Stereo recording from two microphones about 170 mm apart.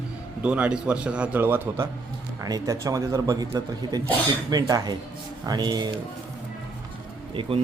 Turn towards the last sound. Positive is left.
turn(degrees=-30)  # may be behind; listen again after turning